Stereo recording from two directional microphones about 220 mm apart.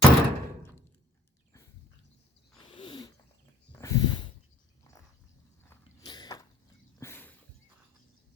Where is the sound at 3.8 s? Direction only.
15° left (ahead or behind).